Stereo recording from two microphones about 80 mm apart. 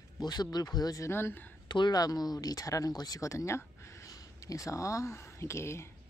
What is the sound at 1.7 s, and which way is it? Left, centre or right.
Speech, left.